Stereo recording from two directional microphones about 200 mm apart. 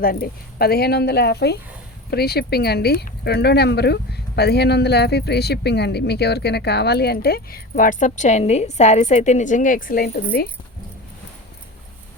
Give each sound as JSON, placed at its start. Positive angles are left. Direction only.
{"t": 0.0, "sound": "speech", "side_deg": 50}